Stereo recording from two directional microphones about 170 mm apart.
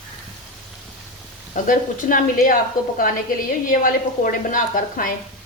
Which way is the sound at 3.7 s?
55° left (ahead or behind).